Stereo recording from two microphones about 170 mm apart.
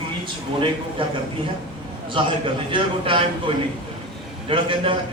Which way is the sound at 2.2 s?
30° right (ahead or behind).